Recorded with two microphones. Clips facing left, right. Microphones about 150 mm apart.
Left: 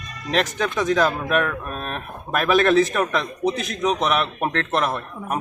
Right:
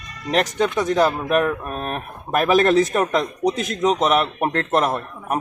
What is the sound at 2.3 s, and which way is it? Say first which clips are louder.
A man's voice: right 1 dB; 40° right (ahead or behind).